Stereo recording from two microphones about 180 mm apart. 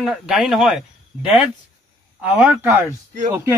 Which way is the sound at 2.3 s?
10° right (ahead or behind).